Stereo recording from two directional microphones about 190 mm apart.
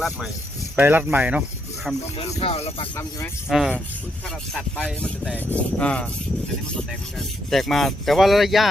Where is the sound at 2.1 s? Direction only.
35° left (ahead or behind); by 3.3 s 15° left (ahead or behind).